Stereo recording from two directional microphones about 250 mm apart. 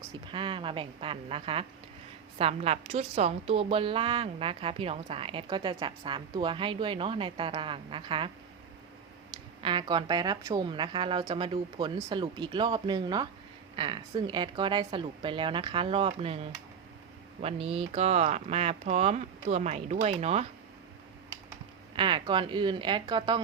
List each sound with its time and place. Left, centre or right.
0.3 s a woman's voice: centre
9.6 s a woman's voice: centre
21.9 s a woman's voice: centre